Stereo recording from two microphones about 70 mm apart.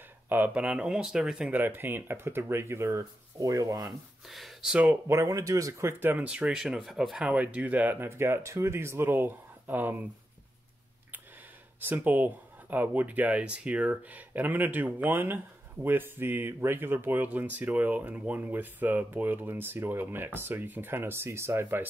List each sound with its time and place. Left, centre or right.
0.6 s speech: centre
1.5 s speech: right
4.3 s speech: centre
5.0 s speech: right
5.9 s speech: right
6.2 s speech: centre
7.2 s speech: centre
8.1 s speech: right
11.9 s speech: right